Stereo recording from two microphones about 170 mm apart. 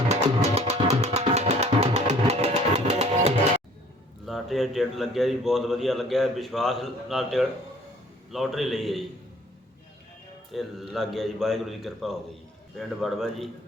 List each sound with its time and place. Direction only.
0.1 s music: 40° right (ahead or behind)
4.3 s a man's voice: centre (ahead or behind)
10.5 s a man's voice: centre (ahead or behind)